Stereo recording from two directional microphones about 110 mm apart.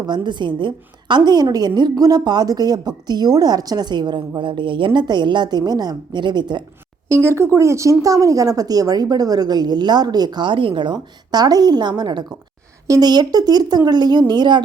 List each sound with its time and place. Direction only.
0.0 s speech: 45° right (ahead or behind)
7.1 s speech: 25° right (ahead or behind); by 14.6 s 45° right (ahead or behind)